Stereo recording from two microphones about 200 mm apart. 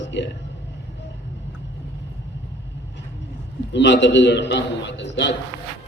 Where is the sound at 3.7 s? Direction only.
60° left (ahead or behind).